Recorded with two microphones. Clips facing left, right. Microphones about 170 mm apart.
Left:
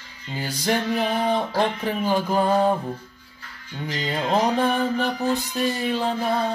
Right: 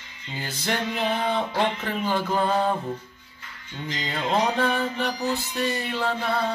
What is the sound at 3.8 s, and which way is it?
Music, 20° right (ahead or behind).